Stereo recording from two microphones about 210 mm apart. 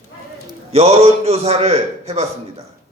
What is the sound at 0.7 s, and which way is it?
Speech, 30° right (ahead or behind).